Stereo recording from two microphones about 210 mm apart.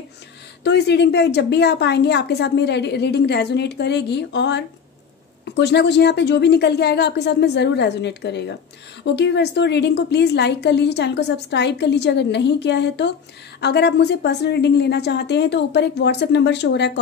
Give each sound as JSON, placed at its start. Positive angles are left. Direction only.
{"t": 0.7, "sound": "a woman's voice", "side_deg": 55}